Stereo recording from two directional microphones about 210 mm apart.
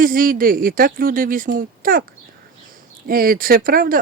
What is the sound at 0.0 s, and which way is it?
Speech, 40° right (ahead or behind).